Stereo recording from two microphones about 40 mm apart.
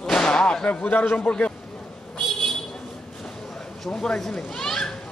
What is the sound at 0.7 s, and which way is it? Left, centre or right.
Speech, left.